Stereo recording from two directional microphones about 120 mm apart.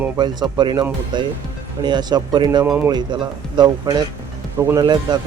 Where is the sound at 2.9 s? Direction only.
40° right (ahead or behind).